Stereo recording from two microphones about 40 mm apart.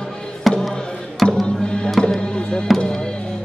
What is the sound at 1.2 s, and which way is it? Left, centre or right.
Music, centre.